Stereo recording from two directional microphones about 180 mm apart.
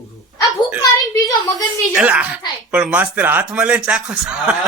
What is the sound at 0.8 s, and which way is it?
Speech, 20° left (ahead or behind).